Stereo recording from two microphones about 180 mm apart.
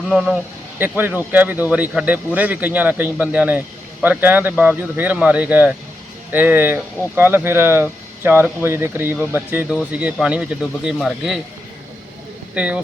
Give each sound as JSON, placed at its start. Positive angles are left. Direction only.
{"t": 0.1, "sound": "speech", "side_deg": 0}
{"t": 12.5, "sound": "speech", "side_deg": -5}